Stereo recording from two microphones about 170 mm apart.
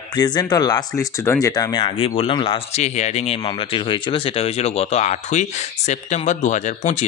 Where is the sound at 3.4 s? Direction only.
30° left (ahead or behind); by 7.1 s 45° left (ahead or behind).